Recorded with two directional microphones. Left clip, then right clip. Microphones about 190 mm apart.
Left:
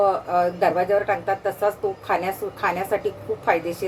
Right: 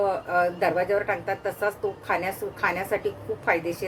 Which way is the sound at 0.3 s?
15° right (ahead or behind).